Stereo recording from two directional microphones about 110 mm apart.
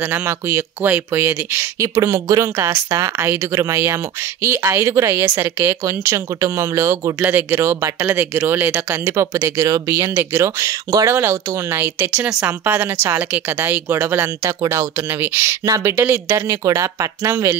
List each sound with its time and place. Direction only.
0.0 s speech: 20° right (ahead or behind)
11.1 s speech: 20° right (ahead or behind)
15.6 s speech: 30° right (ahead or behind)
15.9 s speech: 20° right (ahead or behind)